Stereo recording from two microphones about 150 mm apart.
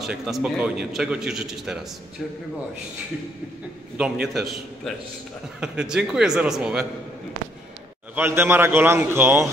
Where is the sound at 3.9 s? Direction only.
5° right (ahead or behind).